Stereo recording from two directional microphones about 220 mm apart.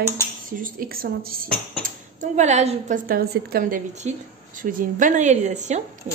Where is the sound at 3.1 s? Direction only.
45° right (ahead or behind).